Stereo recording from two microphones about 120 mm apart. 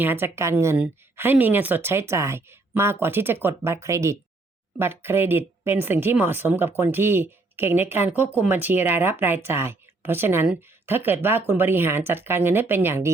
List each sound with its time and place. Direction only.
0.0 s speech: 20° right (ahead or behind)